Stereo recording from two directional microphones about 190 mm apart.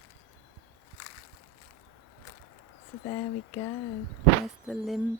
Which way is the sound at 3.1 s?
10° left (ahead or behind).